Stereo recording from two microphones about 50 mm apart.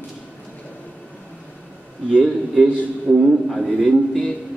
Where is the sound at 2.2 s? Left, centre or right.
Centre.